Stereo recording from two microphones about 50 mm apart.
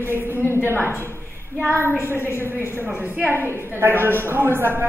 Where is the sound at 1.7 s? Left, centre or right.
Right.